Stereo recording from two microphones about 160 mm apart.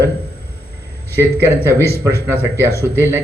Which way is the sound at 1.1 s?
15° right (ahead or behind).